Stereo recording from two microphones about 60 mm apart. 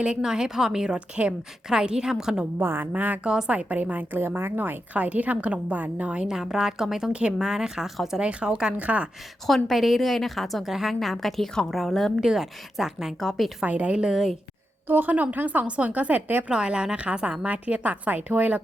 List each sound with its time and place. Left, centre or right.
0.0 s a woman's voice: centre
0.9 s a woman's voice: right
2.6 s speech: right
3.2 s a woman's voice: centre
3.5 s a woman's voice: right; by 8.2 s centre
8.2 s a woman's voice: centre
9.6 s a woman's voice: centre
13.7 s a woman's voice: right
14.8 s a woman's voice: right
16.5 s a woman's voice: centre